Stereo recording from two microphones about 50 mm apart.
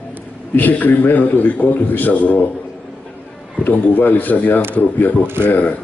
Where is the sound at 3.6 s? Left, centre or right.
Left.